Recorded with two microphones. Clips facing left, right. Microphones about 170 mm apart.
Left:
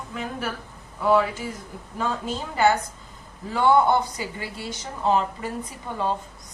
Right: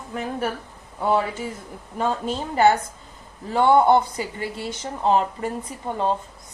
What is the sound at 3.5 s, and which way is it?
Speech, 25° right (ahead or behind).